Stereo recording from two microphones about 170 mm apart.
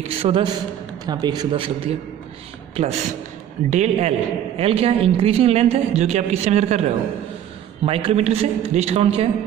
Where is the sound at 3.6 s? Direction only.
40° right (ahead or behind).